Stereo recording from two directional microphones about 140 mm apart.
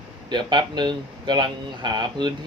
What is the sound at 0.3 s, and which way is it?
Speech, 30° right (ahead or behind).